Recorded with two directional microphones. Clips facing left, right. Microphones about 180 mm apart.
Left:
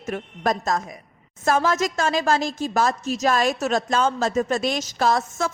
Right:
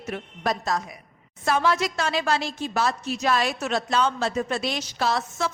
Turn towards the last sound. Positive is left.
turn(degrees=45)  # may be behind; listen again after turning